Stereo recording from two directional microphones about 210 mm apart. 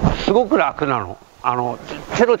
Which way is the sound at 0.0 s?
15° right (ahead or behind).